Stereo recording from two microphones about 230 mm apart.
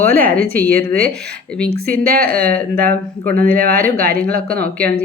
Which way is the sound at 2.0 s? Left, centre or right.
Right.